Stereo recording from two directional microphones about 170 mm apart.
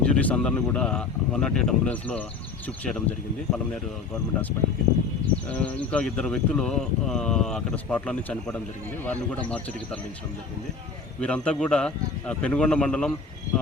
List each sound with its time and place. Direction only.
0.0 s speech: 5° left (ahead or behind)
11.2 s speech: 5° left (ahead or behind)